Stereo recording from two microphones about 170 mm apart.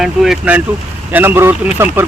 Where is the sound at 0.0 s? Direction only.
Centre (ahead or behind).